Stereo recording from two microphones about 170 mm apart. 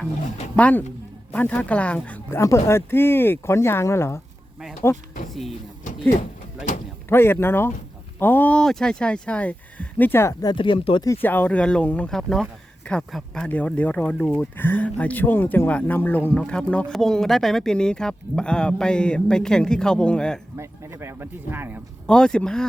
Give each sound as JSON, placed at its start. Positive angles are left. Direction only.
{"t": 0.5, "sound": "speech", "side_deg": 10}
{"t": 5.3, "sound": "speech", "side_deg": 0}
{"t": 7.1, "sound": "speech", "side_deg": 15}
{"t": 10.5, "sound": "speech", "side_deg": 30}
{"t": 11.1, "sound": "speech", "side_deg": 10}
{"t": 20.6, "sound": "speech", "side_deg": -15}
{"t": 22.0, "sound": "speech", "side_deg": 5}